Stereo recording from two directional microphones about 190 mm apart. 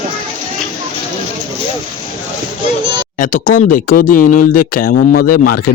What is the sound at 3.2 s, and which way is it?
Speech, 45° left (ahead or behind).